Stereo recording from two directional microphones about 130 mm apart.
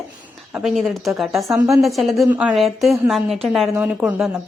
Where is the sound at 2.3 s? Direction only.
10° right (ahead or behind).